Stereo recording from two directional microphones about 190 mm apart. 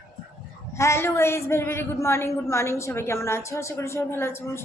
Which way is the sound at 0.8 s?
15° left (ahead or behind).